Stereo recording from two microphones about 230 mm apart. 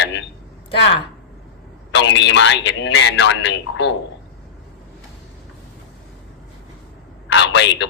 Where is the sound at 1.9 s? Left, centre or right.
Left.